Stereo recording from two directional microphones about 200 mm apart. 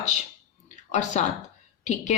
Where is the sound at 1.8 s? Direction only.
35° left (ahead or behind).